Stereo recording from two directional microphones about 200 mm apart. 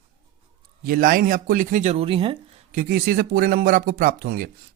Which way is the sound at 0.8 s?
45° right (ahead or behind).